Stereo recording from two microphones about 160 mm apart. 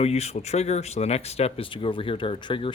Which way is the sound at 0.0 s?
40° left (ahead or behind).